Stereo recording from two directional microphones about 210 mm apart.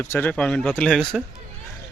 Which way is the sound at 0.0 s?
10° left (ahead or behind).